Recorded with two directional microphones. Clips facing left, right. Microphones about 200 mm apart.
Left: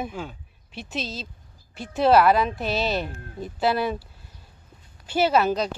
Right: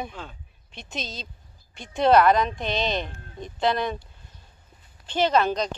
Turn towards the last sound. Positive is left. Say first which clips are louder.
# left 1 dB
turn(degrees=5)  # may be behind; listen again after turning